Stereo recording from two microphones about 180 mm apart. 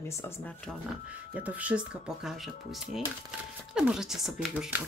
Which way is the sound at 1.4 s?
10° right (ahead or behind).